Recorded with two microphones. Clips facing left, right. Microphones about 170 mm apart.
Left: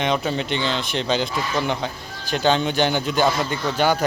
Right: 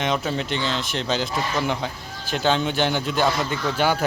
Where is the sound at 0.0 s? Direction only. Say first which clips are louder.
Left 2 dB; centre (ahead or behind).